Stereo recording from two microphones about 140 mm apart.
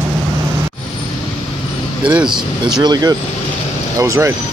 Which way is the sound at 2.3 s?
30° right (ahead or behind).